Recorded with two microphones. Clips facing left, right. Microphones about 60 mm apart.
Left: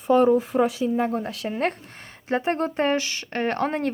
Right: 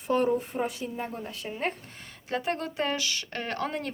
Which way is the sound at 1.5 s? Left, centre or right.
Left.